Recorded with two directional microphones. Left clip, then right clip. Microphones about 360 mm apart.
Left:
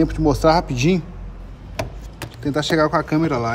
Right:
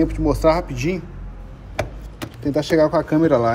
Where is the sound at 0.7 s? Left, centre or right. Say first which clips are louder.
Left 4 dB; left.